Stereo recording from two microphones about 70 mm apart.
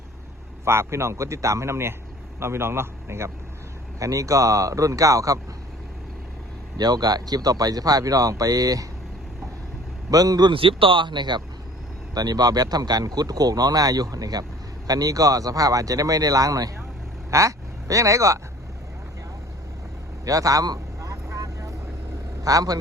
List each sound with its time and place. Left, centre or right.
0.6 s speech: right
4.0 s speech: right
6.7 s speech: right
10.1 s speech: right
11.1 s speech: right
12.1 s speech: right
20.2 s vehicle: right
22.4 s speech: right